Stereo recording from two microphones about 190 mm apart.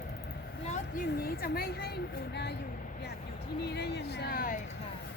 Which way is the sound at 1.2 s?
50° left (ahead or behind).